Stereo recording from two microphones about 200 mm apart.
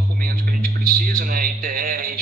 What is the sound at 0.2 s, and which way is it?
A man's voice, 45° right (ahead or behind).